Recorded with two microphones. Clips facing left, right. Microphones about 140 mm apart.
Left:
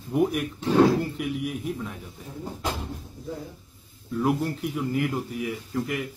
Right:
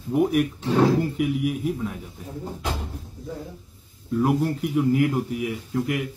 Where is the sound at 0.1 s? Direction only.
Centre (ahead or behind).